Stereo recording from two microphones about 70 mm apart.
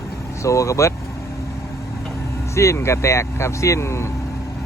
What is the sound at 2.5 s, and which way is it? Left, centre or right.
Speech, left.